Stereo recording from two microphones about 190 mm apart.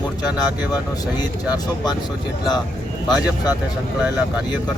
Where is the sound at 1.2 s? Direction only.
20° left (ahead or behind).